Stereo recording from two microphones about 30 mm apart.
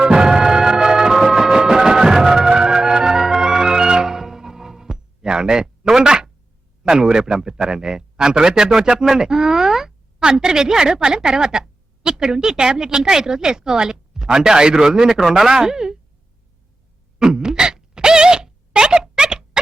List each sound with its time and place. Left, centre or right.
0.0 s music: centre
6.8 s a woman's voice: right
17.2 s a sound: right